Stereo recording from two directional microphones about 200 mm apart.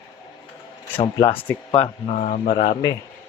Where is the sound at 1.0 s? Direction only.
15° left (ahead or behind).